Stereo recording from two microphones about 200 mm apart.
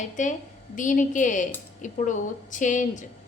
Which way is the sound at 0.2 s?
40° left (ahead or behind).